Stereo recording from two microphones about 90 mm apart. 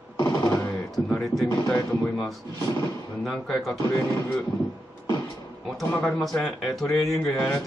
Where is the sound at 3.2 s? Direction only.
Centre (ahead or behind).